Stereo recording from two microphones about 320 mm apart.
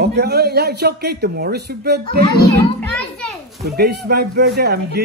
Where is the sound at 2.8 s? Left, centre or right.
Centre.